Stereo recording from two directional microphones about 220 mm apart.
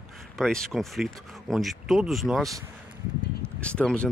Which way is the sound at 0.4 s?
Centre (ahead or behind).